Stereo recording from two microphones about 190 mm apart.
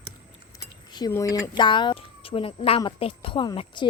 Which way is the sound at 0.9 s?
20° left (ahead or behind).